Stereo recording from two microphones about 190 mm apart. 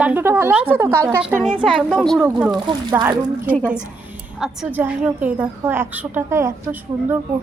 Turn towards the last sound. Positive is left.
turn(degrees=-10)  # may be behind; listen again after turning